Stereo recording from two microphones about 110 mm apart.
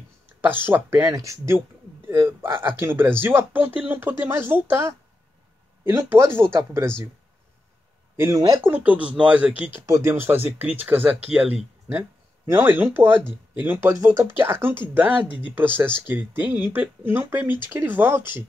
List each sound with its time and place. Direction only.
0.4 s speech: 20° right (ahead or behind)
8.2 s speech: 30° right (ahead or behind)
8.6 s speech: 15° right (ahead or behind)
12.4 s speech: 20° right (ahead or behind)